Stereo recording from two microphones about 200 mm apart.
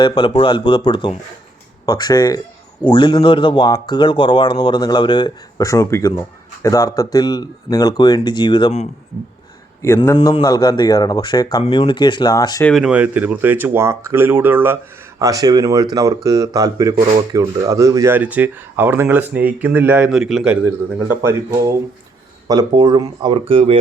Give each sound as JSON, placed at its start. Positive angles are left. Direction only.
{"t": 0.0, "sound": "speech", "side_deg": 20}
{"t": 9.8, "sound": "a man's voice", "side_deg": 15}
{"t": 10.2, "sound": "speech", "side_deg": 25}
{"t": 12.7, "sound": "a man's voice", "side_deg": -5}